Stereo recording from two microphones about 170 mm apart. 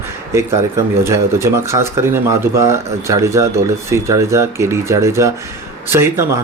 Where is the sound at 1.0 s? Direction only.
15° right (ahead or behind).